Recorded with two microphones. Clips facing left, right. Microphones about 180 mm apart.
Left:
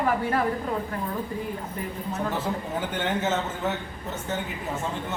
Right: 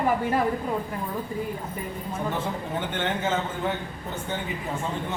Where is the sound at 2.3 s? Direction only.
10° left (ahead or behind).